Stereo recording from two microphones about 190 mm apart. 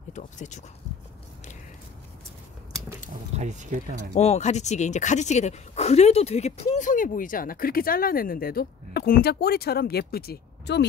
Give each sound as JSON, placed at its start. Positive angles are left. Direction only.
{"t": 0.1, "sound": "speech", "side_deg": 40}
{"t": 3.3, "sound": "speech", "side_deg": -40}
{"t": 4.1, "sound": "speech", "side_deg": 35}